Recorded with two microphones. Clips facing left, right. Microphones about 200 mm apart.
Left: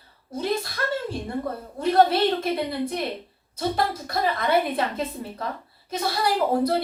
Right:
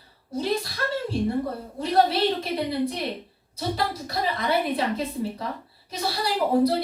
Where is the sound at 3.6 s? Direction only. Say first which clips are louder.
Left 2 dB; 50° left (ahead or behind).